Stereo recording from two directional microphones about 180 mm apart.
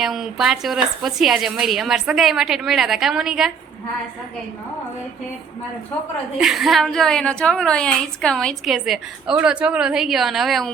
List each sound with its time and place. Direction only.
0.0 s a woman's voice: centre (ahead or behind)
6.4 s a woman's voice: centre (ahead or behind)